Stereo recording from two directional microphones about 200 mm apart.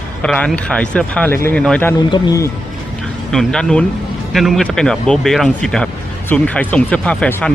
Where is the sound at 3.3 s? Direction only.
5° left (ahead or behind).